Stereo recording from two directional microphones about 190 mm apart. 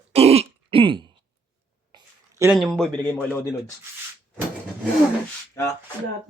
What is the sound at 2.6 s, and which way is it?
Speech, centre (ahead or behind).